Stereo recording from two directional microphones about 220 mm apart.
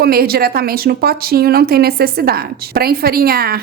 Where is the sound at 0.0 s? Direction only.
45° right (ahead or behind).